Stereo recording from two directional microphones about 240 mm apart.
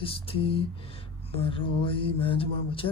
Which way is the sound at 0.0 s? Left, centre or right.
Left.